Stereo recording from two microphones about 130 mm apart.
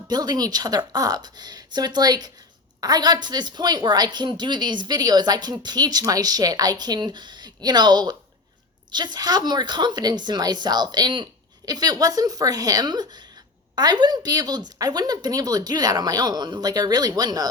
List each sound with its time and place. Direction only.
0.1 s a woman's voice: 30° right (ahead or behind)